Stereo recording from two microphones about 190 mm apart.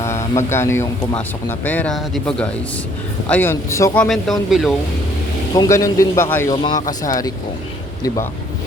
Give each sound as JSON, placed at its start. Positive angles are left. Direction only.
{"t": 0.0, "sound": "speech", "side_deg": 15}
{"t": 4.0, "sound": "speech", "side_deg": 0}
{"t": 5.5, "sound": "speech", "side_deg": 15}